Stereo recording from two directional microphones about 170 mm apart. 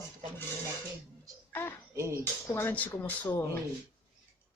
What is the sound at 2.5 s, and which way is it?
Speech, 15° left (ahead or behind).